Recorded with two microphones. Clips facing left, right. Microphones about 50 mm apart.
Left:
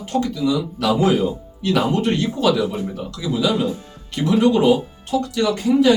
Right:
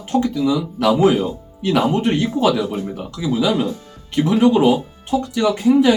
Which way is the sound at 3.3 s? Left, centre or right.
Right.